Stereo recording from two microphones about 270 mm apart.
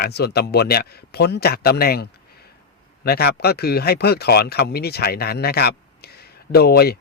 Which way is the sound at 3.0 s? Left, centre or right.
Left.